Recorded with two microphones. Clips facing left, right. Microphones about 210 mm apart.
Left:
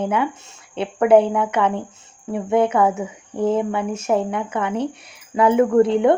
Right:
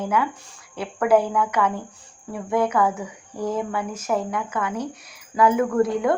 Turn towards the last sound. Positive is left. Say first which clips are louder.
# left 6 dB
turn(degrees=30)  # may be behind; listen again after turning